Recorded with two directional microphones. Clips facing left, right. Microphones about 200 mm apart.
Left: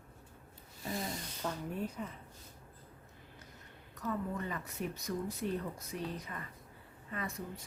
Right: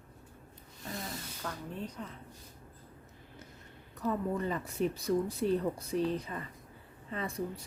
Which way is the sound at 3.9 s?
30° right (ahead or behind).